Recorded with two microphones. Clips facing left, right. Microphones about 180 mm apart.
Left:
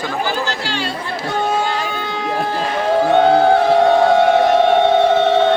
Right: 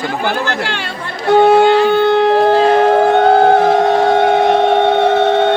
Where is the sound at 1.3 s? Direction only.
65° right (ahead or behind).